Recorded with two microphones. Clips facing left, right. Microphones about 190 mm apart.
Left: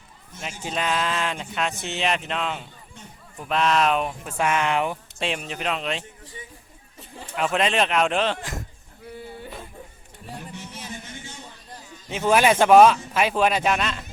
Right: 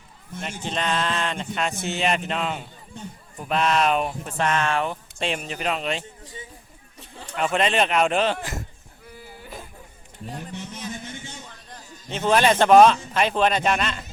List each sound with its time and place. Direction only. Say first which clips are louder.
0.4 s speech: even; 5° left (ahead or behind)
3.0 s a man's voice: right 9 dB; 35° right (ahead or behind)
3.3 s speech: even; centre (ahead or behind); by 4.9 s 15° left (ahead or behind)
5.2 s speech: right 1 dB; centre (ahead or behind)
7.2 s speech: even; centre (ahead or behind)
12.0 s speech: even; 5° left (ahead or behind)